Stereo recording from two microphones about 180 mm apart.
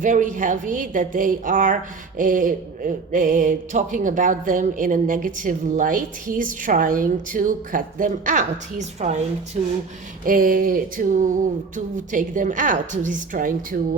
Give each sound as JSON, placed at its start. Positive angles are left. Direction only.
{"t": 0.0, "sound": "a woman's voice", "side_deg": -45}
{"t": 10.2, "sound": "a woman's voice", "side_deg": -50}